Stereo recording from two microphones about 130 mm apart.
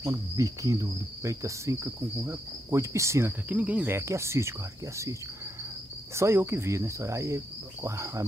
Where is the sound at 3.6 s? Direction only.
10° right (ahead or behind).